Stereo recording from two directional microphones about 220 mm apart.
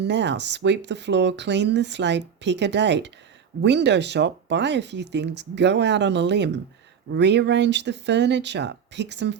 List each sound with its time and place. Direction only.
0.0 s speech: 50° right (ahead or behind)